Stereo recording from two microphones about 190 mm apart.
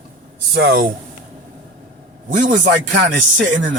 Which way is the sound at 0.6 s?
55° right (ahead or behind).